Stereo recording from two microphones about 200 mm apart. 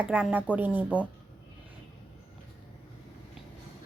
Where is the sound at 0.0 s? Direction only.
5° right (ahead or behind).